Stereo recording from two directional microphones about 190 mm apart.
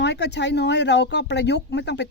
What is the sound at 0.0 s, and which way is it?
Speech, 65° left (ahead or behind).